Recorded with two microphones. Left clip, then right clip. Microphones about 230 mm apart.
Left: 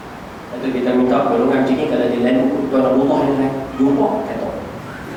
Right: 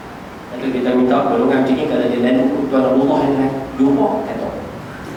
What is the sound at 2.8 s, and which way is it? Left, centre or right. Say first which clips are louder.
Speech: even; right.